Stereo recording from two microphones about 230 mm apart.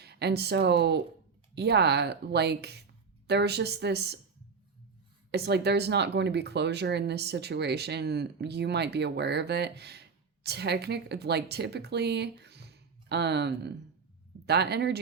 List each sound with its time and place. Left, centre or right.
0.0 s speech: right
5.3 s speech: right